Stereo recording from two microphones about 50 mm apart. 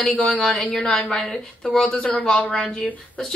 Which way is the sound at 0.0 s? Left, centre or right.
Left.